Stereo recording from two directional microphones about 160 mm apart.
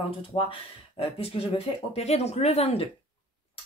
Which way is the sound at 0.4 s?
35° left (ahead or behind).